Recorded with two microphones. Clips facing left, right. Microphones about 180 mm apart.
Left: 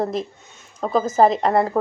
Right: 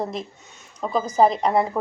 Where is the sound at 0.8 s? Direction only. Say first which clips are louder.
Left 4 dB; 40° left (ahead or behind).